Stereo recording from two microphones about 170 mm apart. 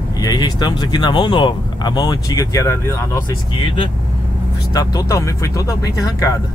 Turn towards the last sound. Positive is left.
turn(degrees=20)  # may be behind; listen again after turning